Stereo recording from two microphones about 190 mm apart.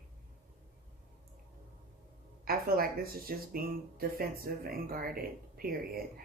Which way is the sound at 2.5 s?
50° right (ahead or behind).